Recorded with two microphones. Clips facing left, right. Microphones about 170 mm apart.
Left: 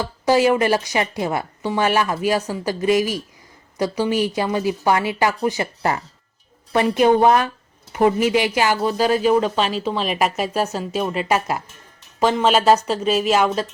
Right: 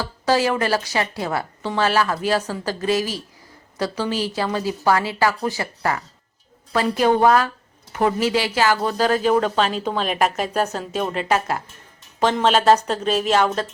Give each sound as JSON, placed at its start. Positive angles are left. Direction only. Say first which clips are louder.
{"t": 0.0, "sound": "a woman's voice", "louder": "left 3 dB", "side_deg": 15}